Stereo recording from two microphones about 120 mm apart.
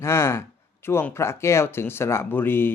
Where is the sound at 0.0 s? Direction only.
20° left (ahead or behind).